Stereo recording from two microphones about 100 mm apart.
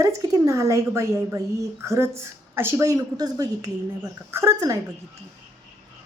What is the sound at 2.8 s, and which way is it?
Speech, 40° right (ahead or behind).